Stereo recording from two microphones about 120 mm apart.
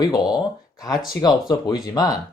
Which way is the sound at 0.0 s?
35° left (ahead or behind).